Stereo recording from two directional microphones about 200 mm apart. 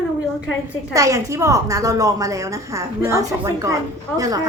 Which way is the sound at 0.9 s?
15° right (ahead or behind).